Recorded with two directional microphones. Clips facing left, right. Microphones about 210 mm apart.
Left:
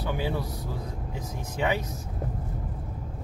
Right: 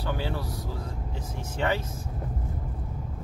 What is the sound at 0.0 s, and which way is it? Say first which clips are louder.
Speech: left 1 dB; 15° left (ahead or behind).